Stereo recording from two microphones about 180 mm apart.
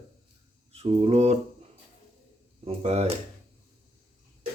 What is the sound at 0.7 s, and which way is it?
Mantra, 35° right (ahead or behind).